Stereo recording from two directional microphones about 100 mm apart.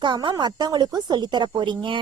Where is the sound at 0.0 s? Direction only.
50° right (ahead or behind).